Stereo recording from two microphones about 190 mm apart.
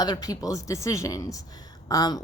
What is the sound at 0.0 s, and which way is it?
Speech, 20° left (ahead or behind).